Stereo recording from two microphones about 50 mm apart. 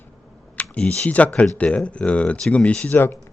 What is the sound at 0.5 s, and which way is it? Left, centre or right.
Speech, left.